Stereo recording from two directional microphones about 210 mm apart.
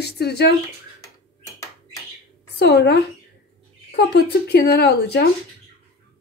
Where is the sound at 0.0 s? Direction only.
50° left (ahead or behind).